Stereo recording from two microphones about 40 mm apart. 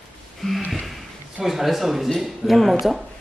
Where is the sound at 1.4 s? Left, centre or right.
Centre.